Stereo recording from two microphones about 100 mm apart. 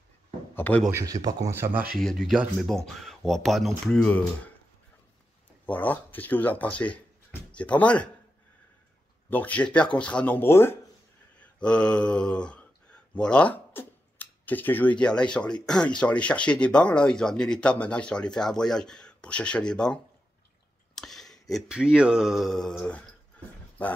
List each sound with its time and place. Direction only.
0.6 s speech: 15° left (ahead or behind)
0.9 s speech: 35° right (ahead or behind); by 1.9 s 20° right (ahead or behind)
2.0 s speech: centre (ahead or behind)
5.7 s speech: 15° left (ahead or behind)
9.3 s speech: 15° left (ahead or behind)
11.3 s speech: 10° left (ahead or behind)
20.9 s a sound: 5° left (ahead or behind)
21.6 s speech: 10° right (ahead or behind)
22.8 s speech: 15° left (ahead or behind)